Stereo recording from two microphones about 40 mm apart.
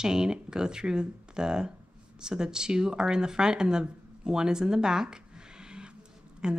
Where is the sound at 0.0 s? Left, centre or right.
Centre.